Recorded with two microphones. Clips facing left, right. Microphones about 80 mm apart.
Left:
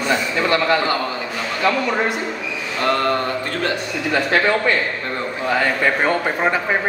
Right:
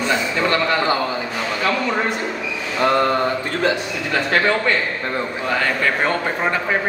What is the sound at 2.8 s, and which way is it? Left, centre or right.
Speech, centre.